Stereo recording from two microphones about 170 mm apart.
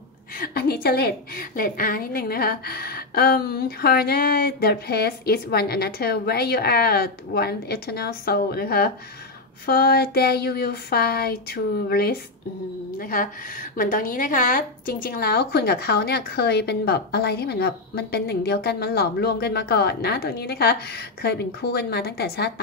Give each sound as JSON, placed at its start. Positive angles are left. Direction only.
{"t": 0.4, "sound": "a sound", "side_deg": 65}
{"t": 0.8, "sound": "a woman's voice", "side_deg": 65}
{"t": 13.0, "sound": "speech", "side_deg": 55}